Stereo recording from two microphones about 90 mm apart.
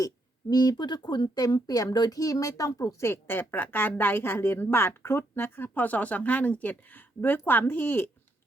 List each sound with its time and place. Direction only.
0.5 s a woman's voice: 50° left (ahead or behind); by 8.1 s 20° left (ahead or behind)